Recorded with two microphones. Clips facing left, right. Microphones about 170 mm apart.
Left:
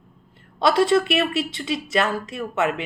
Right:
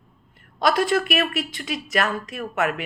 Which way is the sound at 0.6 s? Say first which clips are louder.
Left 3 dB; 25° left (ahead or behind).